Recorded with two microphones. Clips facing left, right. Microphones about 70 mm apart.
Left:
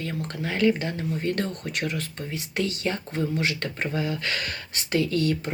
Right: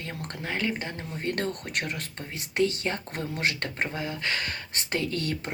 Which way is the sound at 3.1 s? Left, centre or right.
Right.